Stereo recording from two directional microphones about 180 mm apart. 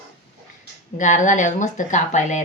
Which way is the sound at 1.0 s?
45° left (ahead or behind).